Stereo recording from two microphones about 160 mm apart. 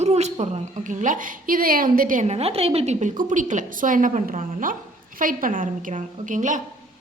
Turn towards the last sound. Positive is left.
turn(degrees=-50)  # may be behind; listen again after turning